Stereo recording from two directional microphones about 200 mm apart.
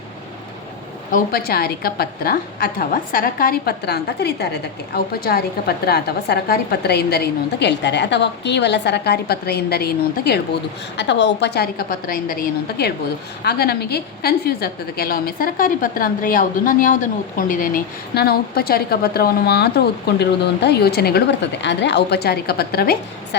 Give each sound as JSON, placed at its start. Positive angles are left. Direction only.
{"t": 1.1, "sound": "a woman's voice", "side_deg": 50}